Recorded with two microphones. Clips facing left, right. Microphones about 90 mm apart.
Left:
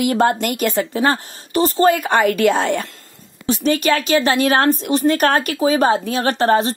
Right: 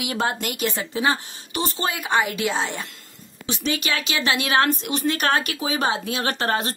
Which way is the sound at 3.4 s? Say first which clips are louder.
Left 9 dB; 45° left (ahead or behind).